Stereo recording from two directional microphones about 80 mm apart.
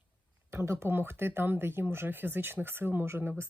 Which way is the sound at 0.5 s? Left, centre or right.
Right.